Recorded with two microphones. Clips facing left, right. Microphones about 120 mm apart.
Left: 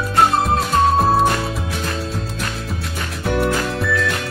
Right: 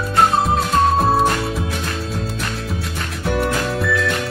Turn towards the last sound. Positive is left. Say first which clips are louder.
# right 1 dB
turn(degrees=0)  # may be behind; listen again after turning